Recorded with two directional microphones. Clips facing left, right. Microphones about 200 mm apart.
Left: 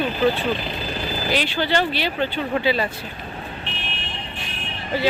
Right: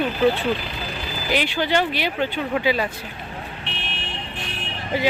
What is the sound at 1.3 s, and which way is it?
Speech, 15° right (ahead or behind).